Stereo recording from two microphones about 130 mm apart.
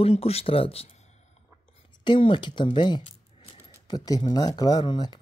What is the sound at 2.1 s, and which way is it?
Speech, 40° left (ahead or behind).